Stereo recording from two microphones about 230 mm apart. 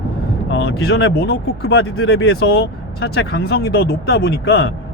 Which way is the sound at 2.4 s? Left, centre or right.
Left.